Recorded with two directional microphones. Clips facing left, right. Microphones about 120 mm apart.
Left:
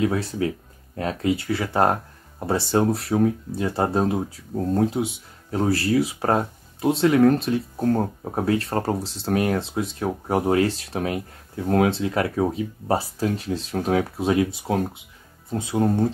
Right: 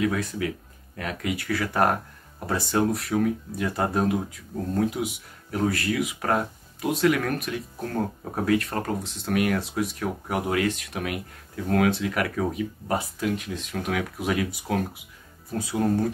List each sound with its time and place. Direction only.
0.0 s speech: 30° left (ahead or behind)